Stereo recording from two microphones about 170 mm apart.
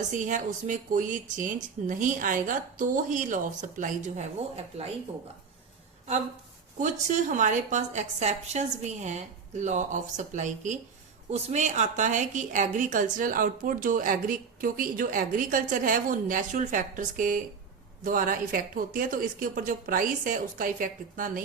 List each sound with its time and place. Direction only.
0.1 s speech: 50° right (ahead or behind)
6.7 s speech: 45° right (ahead or behind)